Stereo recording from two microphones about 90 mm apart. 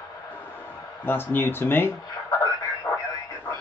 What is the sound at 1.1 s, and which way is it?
Speech, 25° left (ahead or behind).